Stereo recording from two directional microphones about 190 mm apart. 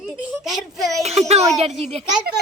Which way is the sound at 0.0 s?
5° right (ahead or behind).